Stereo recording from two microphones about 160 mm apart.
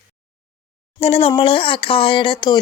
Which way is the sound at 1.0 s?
40° left (ahead or behind).